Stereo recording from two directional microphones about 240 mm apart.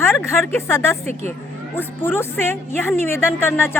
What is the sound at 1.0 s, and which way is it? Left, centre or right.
Speech, right.